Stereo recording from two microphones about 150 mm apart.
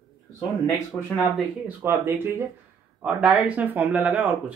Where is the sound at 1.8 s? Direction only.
15° right (ahead or behind).